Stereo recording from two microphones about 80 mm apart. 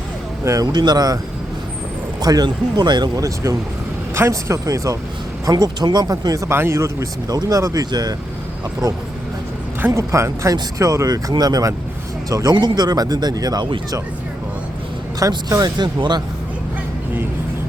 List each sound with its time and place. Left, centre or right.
0.4 s speech: right
0.7 s speech: right
2.2 s speech: right
3.2 s speech: right
4.1 s speech: right
7.9 s speech: right
9.9 s speech: right
12.5 s speech: right
15.4 s speech: right
15.8 s speech: right